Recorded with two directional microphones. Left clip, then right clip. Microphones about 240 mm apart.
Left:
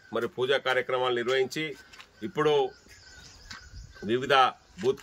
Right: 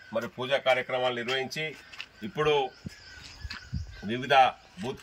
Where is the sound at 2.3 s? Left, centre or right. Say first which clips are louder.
Left 1 dB; left.